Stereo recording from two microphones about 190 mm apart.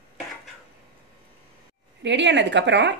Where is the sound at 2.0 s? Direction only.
70° right (ahead or behind).